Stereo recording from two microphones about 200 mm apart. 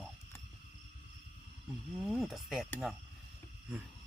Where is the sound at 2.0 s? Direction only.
Centre (ahead or behind).